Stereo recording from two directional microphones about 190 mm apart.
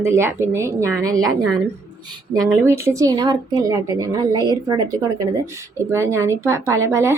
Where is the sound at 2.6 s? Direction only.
15° right (ahead or behind).